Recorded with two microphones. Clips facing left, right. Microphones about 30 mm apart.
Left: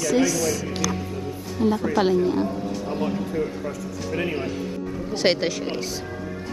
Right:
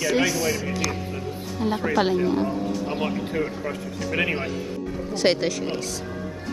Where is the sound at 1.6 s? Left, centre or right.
Centre.